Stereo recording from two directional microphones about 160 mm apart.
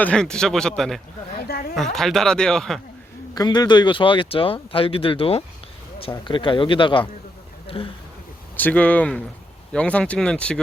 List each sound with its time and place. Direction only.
0.0 s speech: 5° left (ahead or behind)
1.5 s a sound: 75° left (ahead or behind)
1.7 s speech: centre (ahead or behind)
3.3 s speech: 25° left (ahead or behind)
8.5 s speech: 10° left (ahead or behind)